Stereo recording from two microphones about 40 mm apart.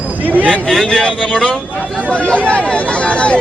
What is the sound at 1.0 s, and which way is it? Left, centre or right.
Speech, left.